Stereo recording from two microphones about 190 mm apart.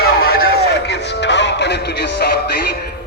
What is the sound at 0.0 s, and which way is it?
Music, 55° left (ahead or behind).